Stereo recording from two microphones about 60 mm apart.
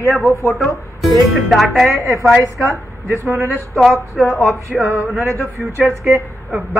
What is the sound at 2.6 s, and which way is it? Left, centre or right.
Speech, right.